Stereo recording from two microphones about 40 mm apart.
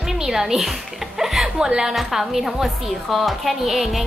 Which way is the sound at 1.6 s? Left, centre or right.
Centre.